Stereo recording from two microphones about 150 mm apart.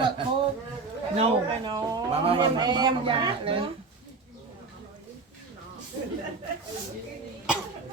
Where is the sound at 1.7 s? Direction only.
25° right (ahead or behind).